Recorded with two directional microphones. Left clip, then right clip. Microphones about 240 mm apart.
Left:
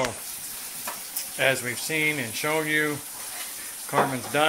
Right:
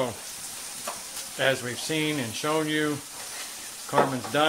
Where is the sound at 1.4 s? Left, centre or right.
Right.